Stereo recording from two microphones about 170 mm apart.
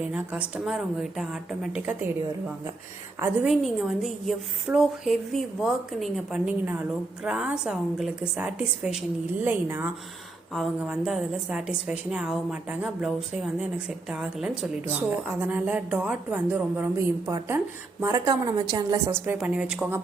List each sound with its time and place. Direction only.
0.1 s a woman's voice: 5° right (ahead or behind)
3.4 s a woman's voice: centre (ahead or behind)
10.5 s a woman's voice: centre (ahead or behind)
18.0 s a woman's voice: 20° right (ahead or behind)
19.2 s a woman's voice: 10° right (ahead or behind)